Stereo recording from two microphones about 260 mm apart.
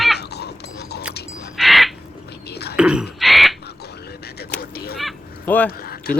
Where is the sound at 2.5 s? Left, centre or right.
Left.